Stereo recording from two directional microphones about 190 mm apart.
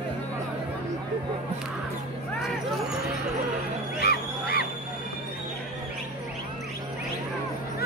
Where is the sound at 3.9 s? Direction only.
55° left (ahead or behind).